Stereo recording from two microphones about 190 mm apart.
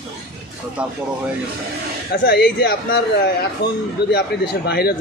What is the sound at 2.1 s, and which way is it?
Speech, 55° left (ahead or behind).